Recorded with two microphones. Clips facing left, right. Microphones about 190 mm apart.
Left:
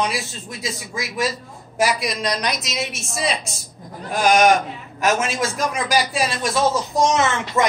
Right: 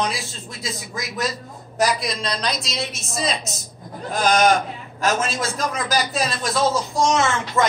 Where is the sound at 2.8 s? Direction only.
35° right (ahead or behind).